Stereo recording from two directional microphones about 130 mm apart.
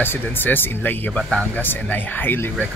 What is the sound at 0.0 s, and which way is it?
Speech, 15° left (ahead or behind).